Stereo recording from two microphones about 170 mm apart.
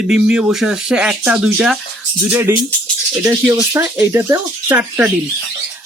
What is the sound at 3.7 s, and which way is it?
Speech, 15° right (ahead or behind).